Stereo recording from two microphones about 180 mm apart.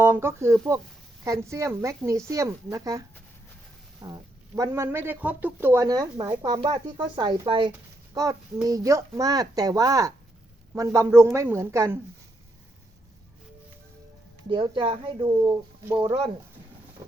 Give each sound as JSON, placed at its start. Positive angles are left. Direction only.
{"t": 0.0, "sound": "speech", "side_deg": -15}
{"t": 4.0, "sound": "speech", "side_deg": -20}
{"t": 14.5, "sound": "speech", "side_deg": -30}
{"t": 17.0, "sound": "boat", "side_deg": -15}